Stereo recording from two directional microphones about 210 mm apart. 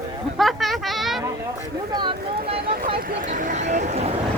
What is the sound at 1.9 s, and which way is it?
Speech, 20° right (ahead or behind).